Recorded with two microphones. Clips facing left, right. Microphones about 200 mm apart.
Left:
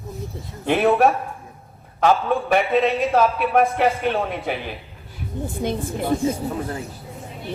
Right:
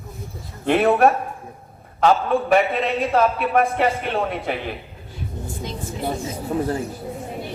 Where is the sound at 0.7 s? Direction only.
55° right (ahead or behind).